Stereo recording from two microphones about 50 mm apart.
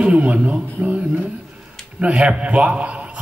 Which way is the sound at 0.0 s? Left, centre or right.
Right.